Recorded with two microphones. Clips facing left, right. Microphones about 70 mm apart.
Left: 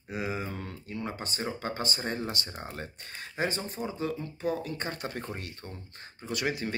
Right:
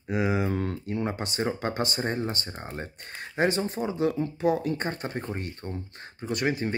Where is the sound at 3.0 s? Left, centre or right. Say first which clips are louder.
Right 6 dB; right.